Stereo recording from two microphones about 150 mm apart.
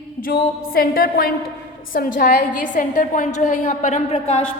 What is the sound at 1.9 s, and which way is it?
A woman's voice, 65° left (ahead or behind).